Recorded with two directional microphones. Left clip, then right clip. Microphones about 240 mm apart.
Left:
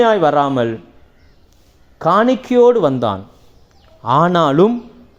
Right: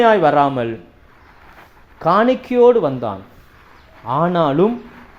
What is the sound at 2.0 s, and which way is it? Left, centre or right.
A man's voice, left.